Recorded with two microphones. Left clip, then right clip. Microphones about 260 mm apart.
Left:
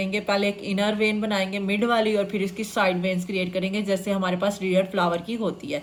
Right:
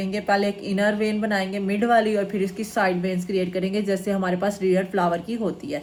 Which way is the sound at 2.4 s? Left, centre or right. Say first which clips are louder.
Right 1 dB; centre.